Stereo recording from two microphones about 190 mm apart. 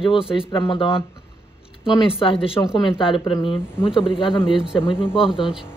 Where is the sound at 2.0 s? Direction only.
30° left (ahead or behind).